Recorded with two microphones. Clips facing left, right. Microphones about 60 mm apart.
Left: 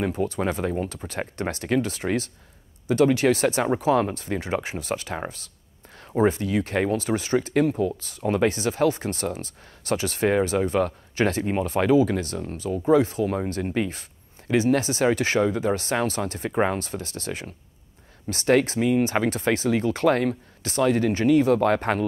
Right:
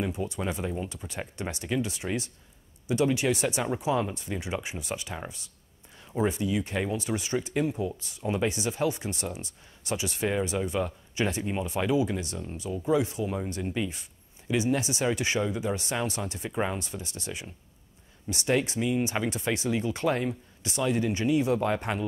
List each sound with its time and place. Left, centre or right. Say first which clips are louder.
0.0 s speech: left 6 dB; left